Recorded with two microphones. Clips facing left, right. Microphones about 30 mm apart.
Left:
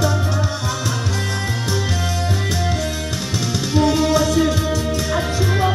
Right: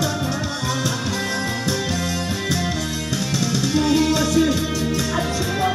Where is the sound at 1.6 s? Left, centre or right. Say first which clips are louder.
Even; centre.